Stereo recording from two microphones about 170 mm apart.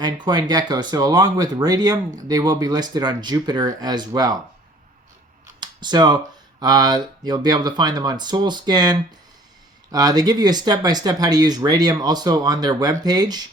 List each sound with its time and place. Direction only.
0.0 s speech: 25° right (ahead or behind)
5.5 s computer keyboard: 25° right (ahead or behind)
6.6 s speech: 25° right (ahead or behind)